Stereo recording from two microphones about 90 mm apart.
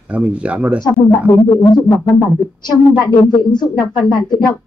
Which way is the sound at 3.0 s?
55° left (ahead or behind).